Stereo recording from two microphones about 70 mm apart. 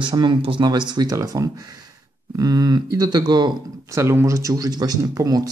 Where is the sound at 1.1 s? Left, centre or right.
Right.